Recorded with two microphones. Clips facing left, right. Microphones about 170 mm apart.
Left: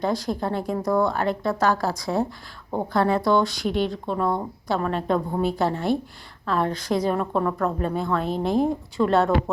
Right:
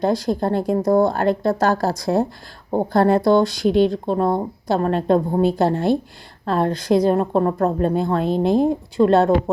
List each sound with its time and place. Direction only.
0.0 s speech: 35° right (ahead or behind)